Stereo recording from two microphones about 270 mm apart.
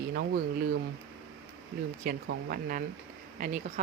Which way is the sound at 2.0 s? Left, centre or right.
Right.